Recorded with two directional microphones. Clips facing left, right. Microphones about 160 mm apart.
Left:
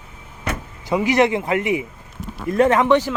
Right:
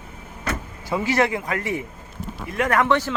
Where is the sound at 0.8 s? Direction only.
20° left (ahead or behind).